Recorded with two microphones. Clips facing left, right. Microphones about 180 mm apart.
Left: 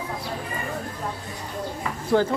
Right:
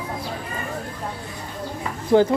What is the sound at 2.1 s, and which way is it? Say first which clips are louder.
Speech: right 5 dB; 20° right (ahead or behind).